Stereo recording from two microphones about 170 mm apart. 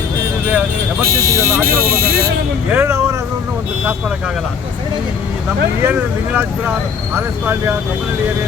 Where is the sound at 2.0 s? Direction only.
60° right (ahead or behind).